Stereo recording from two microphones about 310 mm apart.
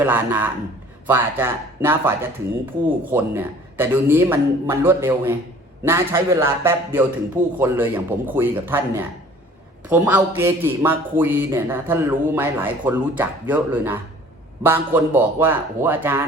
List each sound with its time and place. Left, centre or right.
0.0 s a man's voice: centre